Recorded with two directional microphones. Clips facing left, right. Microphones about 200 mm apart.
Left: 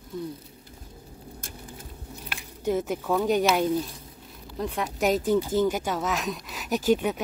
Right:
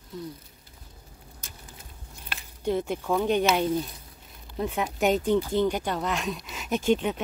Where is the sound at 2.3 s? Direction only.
5° left (ahead or behind).